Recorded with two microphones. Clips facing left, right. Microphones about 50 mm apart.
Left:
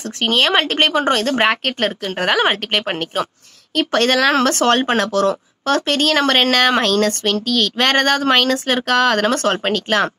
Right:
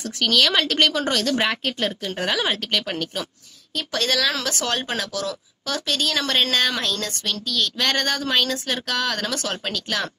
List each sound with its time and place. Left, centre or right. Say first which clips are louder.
0.2 s speech: left 4 dB; left